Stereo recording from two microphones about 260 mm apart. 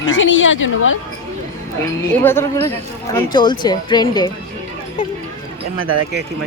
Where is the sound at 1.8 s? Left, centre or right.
Centre.